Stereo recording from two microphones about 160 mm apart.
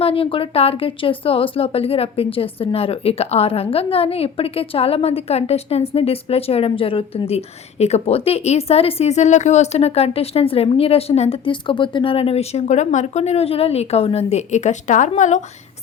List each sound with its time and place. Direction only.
0.0 s speech: 35° left (ahead or behind)